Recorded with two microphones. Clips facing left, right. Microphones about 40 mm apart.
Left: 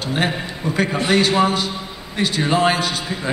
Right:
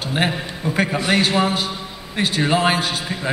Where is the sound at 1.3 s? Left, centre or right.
Centre.